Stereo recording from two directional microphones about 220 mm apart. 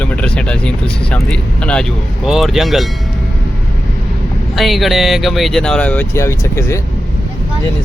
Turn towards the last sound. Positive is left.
turn(degrees=15)  # may be behind; listen again after turning